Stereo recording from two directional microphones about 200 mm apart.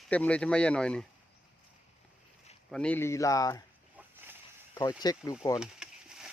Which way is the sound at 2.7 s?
5° left (ahead or behind).